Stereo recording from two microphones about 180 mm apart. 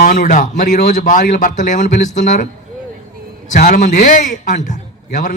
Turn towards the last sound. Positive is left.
turn(degrees=45)  # may be behind; listen again after turning